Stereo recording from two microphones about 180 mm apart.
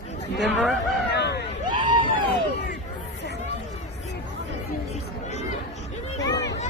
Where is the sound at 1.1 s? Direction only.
70° left (ahead or behind).